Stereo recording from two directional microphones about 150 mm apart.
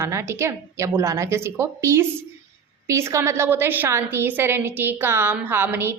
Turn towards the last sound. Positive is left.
turn(degrees=-15)  # may be behind; listen again after turning